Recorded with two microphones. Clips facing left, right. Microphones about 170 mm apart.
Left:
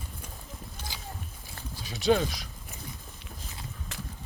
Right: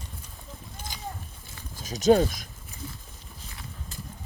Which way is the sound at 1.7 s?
45° right (ahead or behind).